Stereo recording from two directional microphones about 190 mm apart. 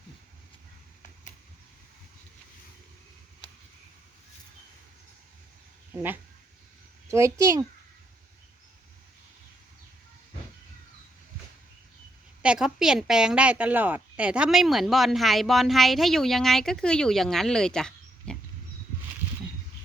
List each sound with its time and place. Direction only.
5.9 s a child's voice: 10° right (ahead or behind)
12.4 s a woman's voice: 5° right (ahead or behind)